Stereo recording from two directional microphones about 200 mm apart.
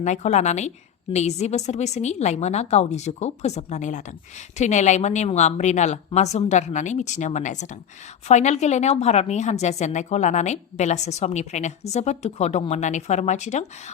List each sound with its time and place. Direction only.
0.0 s a woman's voice: 35° left (ahead or behind)